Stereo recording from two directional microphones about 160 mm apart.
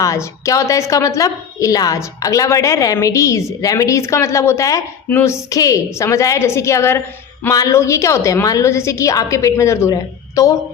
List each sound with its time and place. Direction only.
0.0 s a woman's voice: 20° left (ahead or behind)